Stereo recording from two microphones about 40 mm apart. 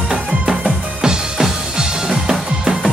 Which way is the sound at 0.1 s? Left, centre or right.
Centre.